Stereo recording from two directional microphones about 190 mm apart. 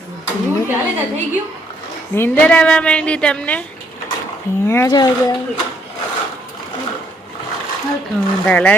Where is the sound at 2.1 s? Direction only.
10° left (ahead or behind).